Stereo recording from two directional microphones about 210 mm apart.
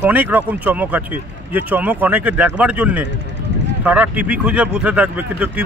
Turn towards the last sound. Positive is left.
turn(degrees=-5)  # may be behind; listen again after turning